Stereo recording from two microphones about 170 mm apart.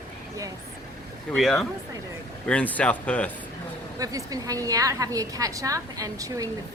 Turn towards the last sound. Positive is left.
turn(degrees=-20)  # may be behind; listen again after turning